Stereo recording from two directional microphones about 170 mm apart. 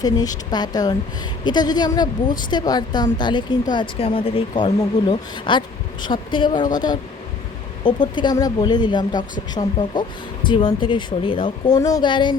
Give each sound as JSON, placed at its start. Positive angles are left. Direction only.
{"t": 0.0, "sound": "speech", "side_deg": 20}